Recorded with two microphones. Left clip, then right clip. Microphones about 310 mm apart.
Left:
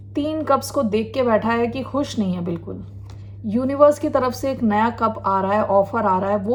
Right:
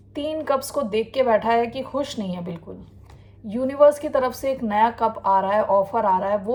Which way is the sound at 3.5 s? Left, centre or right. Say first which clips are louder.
Left 1 dB; centre.